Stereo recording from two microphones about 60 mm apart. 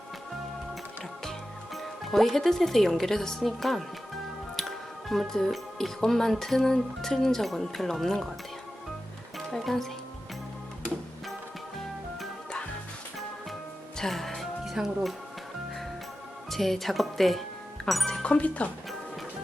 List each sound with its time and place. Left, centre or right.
1.2 s speech: centre
9.5 s speech: centre
14.0 s music: centre
16.5 s speech: centre
17.8 s music: centre
18.2 s speech: left